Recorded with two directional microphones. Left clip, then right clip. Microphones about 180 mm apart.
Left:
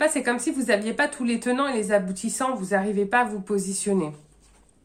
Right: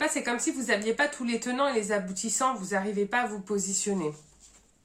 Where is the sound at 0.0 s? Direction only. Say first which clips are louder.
Left 5 dB; 40° left (ahead or behind).